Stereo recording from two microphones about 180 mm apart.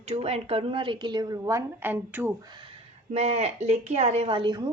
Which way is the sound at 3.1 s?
35° right (ahead or behind).